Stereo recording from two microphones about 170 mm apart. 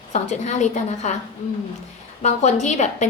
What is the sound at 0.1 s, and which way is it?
A woman's voice, 45° left (ahead or behind).